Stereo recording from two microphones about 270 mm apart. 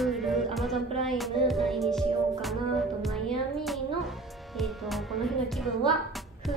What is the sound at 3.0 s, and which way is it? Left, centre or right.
Music, centre.